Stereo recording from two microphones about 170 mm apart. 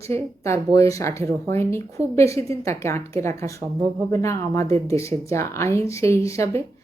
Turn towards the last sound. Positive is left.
turn(degrees=15)  # may be behind; listen again after turning